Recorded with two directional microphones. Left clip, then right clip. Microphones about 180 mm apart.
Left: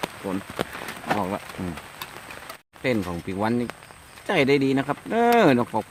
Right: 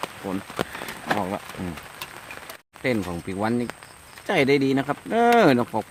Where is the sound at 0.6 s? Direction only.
5° right (ahead or behind).